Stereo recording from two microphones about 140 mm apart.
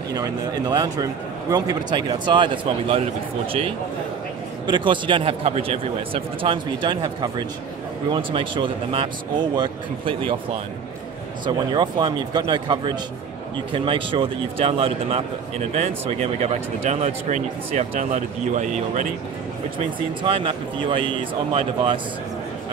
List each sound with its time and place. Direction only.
0.1 s speech: 30° right (ahead or behind)
4.6 s speech: 35° right (ahead or behind); by 19.1 s 60° right (ahead or behind)
20.2 s speech: 40° right (ahead or behind)